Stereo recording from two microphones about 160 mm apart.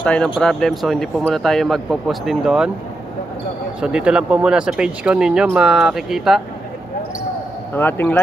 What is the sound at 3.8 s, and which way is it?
Speech, 5° right (ahead or behind).